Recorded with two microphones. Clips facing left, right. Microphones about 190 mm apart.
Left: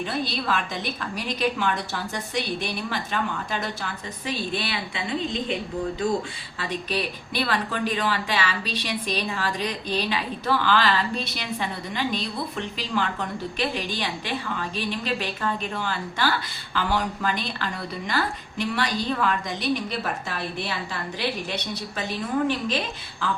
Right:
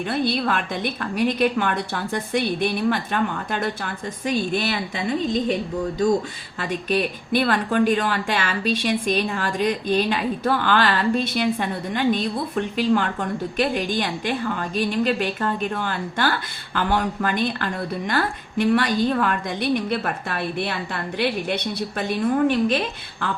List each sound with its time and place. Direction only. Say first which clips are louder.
0.0 s a woman's voice: right 5 dB; 55° right (ahead or behind)
6.6 s a woman's voice: right 5 dB; 50° right (ahead or behind)
23.2 s speech: right 1 dB; 60° right (ahead or behind)